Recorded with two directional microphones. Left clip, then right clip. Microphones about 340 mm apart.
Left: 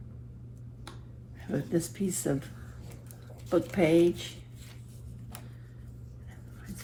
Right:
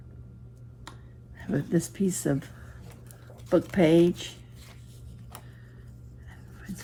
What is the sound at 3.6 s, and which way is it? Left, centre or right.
Speech, right.